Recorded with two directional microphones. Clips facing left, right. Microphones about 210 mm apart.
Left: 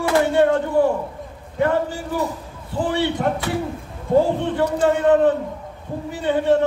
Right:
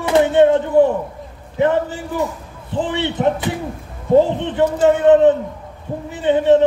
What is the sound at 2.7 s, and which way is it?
Speech, 20° right (ahead or behind).